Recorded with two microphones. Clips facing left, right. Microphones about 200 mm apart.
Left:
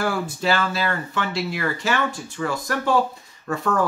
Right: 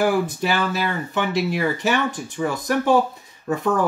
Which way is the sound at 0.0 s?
15° right (ahead or behind).